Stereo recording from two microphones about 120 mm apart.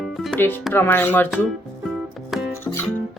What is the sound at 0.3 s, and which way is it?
Speech, 15° left (ahead or behind).